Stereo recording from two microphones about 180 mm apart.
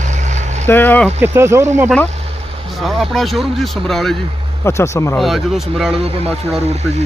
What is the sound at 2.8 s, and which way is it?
Speech, centre (ahead or behind).